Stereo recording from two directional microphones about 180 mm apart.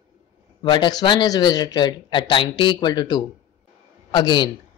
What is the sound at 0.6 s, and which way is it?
A man's voice, 25° left (ahead or behind).